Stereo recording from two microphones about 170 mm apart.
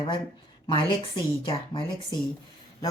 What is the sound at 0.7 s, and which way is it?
Speech, 30° left (ahead or behind).